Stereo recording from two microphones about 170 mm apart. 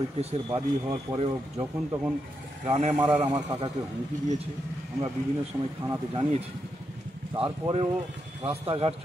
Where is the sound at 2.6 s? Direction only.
40° right (ahead or behind).